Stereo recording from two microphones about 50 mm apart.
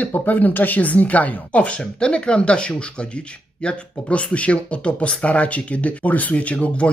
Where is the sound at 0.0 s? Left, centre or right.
Left.